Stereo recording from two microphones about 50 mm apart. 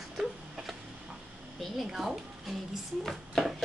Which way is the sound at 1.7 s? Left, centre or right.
Centre.